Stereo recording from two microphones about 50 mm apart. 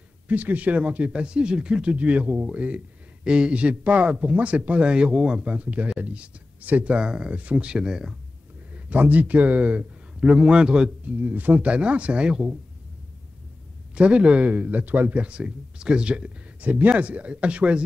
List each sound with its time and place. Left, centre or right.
0.3 s speech: right; by 5.4 s centre
5.4 s speech: right
7.8 s speech: centre
8.7 s a man's voice: right
11.1 s speech: right
13.9 s speech: right
16.6 s speech: right